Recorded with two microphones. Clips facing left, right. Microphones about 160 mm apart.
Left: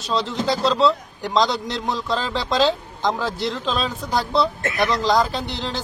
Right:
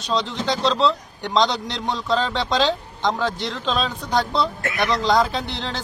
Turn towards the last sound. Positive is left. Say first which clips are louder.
# left 1 dB
turn(degrees=0)  # may be behind; listen again after turning